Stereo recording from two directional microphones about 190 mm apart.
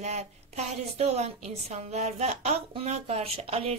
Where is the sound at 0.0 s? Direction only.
35° right (ahead or behind).